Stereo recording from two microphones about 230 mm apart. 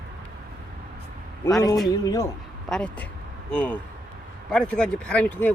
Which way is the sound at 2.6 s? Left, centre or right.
Centre.